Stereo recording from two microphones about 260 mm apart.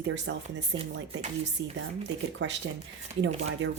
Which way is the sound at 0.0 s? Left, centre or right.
Right.